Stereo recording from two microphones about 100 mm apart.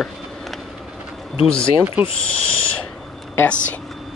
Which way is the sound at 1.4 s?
10° left (ahead or behind).